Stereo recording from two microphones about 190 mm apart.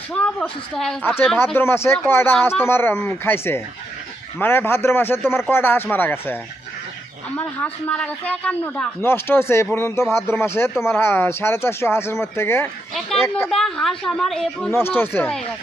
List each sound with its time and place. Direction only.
0.1 s a woman's voice: 5° left (ahead or behind)